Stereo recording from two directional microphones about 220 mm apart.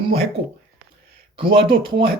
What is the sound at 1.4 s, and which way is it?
Speech, 25° right (ahead or behind).